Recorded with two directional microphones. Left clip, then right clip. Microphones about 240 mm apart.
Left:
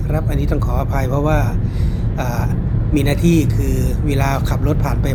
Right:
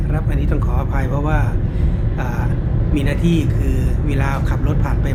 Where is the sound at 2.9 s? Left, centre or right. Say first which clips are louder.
Left 4 dB; centre.